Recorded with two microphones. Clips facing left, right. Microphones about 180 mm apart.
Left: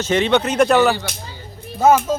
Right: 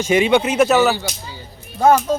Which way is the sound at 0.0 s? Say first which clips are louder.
Right 2 dB; 10° right (ahead or behind).